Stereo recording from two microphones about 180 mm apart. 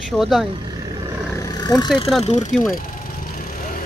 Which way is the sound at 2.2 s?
40° left (ahead or behind).